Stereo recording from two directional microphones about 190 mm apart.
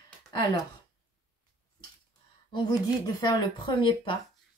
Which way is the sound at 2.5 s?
25° left (ahead or behind).